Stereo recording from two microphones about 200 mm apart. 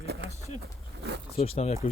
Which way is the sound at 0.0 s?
55° right (ahead or behind).